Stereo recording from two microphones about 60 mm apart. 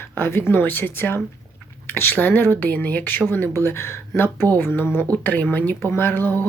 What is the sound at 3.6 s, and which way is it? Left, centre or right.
Speech, left.